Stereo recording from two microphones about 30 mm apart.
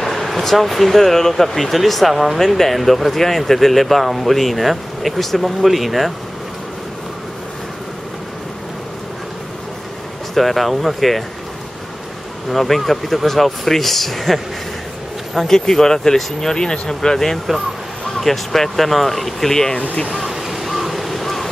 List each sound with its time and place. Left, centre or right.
0.0 s speech: centre
10.3 s speech: centre
12.4 s speech: centre
15.4 s speech: centre
20.2 s crow: centre